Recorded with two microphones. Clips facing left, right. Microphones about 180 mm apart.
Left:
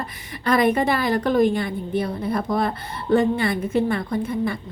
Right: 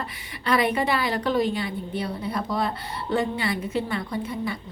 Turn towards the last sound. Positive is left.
turn(degrees=50)  # may be behind; listen again after turning